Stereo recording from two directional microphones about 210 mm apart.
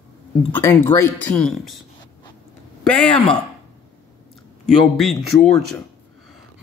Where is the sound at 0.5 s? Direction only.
10° left (ahead or behind).